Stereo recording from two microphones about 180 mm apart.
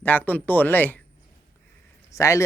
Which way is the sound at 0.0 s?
10° left (ahead or behind).